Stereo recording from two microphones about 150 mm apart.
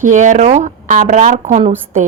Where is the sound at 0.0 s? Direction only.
55° right (ahead or behind).